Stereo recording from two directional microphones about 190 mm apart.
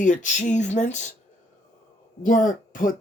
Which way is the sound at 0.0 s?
40° left (ahead or behind).